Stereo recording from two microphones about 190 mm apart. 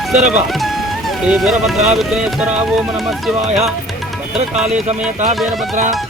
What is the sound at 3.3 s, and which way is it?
Speech, 35° right (ahead or behind).